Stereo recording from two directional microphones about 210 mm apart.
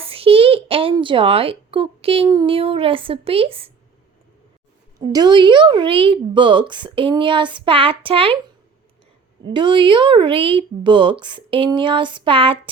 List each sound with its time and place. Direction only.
0.0 s a sound: 25° right (ahead or behind)
2.3 s speech: 20° right (ahead or behind)
4.9 s speech: 20° right (ahead or behind)
9.4 s speech: 20° right (ahead or behind)